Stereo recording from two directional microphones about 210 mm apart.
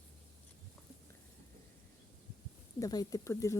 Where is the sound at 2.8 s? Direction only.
15° left (ahead or behind).